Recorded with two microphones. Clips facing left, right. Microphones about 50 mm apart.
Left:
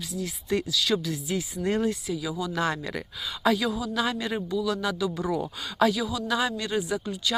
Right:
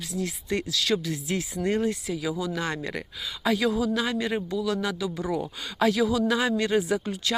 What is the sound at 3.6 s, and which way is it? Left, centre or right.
Speech, right.